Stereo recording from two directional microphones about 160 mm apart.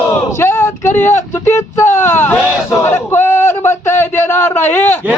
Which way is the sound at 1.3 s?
15° left (ahead or behind).